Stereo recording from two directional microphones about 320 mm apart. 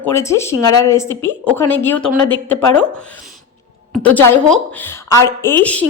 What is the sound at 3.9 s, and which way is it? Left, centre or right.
A woman's voice, centre.